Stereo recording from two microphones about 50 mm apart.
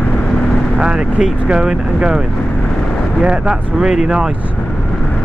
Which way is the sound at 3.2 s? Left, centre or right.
Centre.